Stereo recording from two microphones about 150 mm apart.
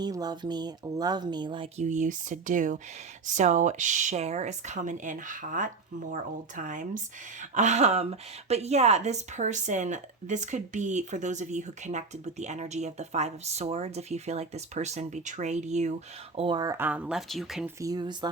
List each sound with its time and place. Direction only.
0.0 s speech: 25° right (ahead or behind)
1.8 s speech: 55° right (ahead or behind)
16.4 s speech: 30° right (ahead or behind)
16.7 s speech: 10° right (ahead or behind)
17.7 s speech: 25° right (ahead or behind)